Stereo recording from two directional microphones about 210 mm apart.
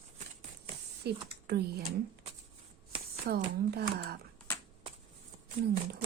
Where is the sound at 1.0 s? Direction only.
50° right (ahead or behind).